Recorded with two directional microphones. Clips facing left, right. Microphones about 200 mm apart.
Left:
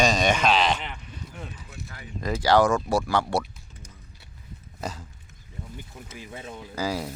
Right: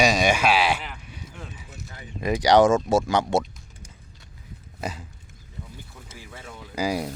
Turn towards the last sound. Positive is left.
turn(degrees=-15)  # may be behind; listen again after turning